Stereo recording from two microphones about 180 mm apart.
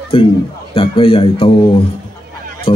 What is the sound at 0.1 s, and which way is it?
A man's voice, 30° left (ahead or behind).